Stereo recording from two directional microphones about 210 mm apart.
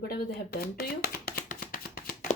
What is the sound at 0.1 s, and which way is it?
Speech, 45° left (ahead or behind).